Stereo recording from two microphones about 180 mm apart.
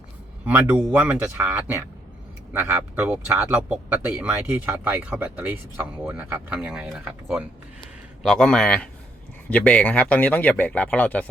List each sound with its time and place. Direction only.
0.4 s a man's voice: 10° right (ahead or behind); by 11.3 s 10° left (ahead or behind)